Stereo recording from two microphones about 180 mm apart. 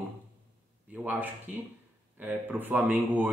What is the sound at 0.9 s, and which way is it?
A man's voice, 10° right (ahead or behind).